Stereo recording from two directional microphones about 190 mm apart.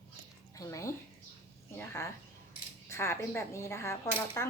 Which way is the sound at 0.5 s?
15° left (ahead or behind).